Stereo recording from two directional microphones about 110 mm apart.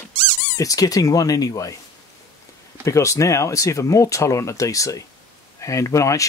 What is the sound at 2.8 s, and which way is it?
Speech, 30° left (ahead or behind).